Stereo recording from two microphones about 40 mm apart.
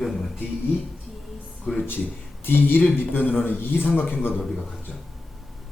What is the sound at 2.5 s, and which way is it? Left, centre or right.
Speech, left.